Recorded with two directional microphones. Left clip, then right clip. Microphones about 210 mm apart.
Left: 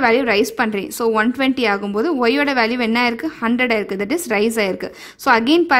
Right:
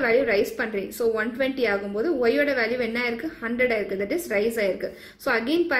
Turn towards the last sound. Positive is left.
turn(degrees=50)  # may be behind; listen again after turning